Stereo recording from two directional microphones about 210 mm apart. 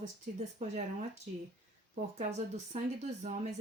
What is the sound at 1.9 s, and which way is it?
Speech, 35° right (ahead or behind).